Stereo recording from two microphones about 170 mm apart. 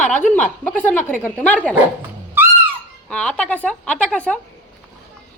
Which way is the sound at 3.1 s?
5° left (ahead or behind).